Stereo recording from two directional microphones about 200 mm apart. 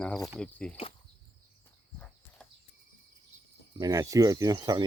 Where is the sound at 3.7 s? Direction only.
20° right (ahead or behind).